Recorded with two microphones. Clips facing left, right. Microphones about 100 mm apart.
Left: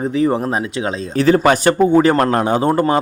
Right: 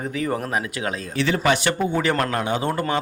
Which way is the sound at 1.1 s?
40° left (ahead or behind).